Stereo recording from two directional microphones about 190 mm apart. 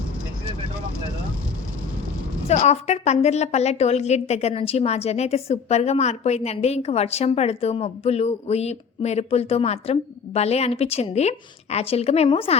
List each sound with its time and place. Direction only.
2.5 s a woman's voice: 35° left (ahead or behind)